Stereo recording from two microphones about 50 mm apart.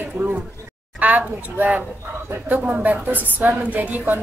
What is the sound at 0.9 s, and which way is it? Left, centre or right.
A woman's voice, right.